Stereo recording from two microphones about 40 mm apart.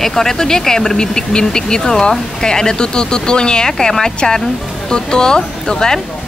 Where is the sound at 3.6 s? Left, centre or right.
Centre.